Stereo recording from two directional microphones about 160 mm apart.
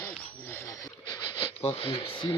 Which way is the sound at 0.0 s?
15° left (ahead or behind).